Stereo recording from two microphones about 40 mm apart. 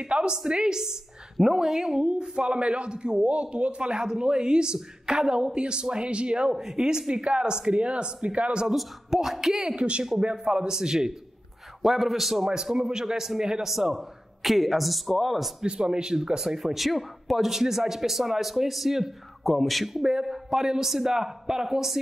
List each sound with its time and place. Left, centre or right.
0.0 s a man's voice: right
2.0 s a man's voice: right
6.5 s a man's voice: centre; by 8.6 s right
9.1 s speech: centre
9.8 s a man's voice: right
11.8 s speech: centre
13.7 s a man's voice: centre
15.9 s a man's voice: right
16.3 s speech: centre